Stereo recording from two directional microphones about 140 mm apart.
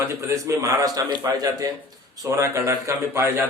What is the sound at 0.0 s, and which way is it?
A man's voice, 20° right (ahead or behind).